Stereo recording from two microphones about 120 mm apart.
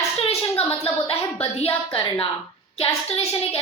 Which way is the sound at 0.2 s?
55° left (ahead or behind).